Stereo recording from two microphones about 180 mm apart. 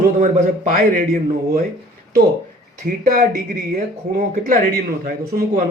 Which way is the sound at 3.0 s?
50° right (ahead or behind).